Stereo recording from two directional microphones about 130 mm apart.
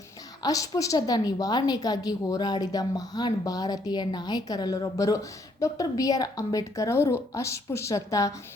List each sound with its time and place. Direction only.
0.4 s a woman's voice: 25° left (ahead or behind)